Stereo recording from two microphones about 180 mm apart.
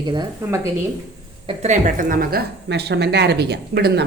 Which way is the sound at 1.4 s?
40° right (ahead or behind).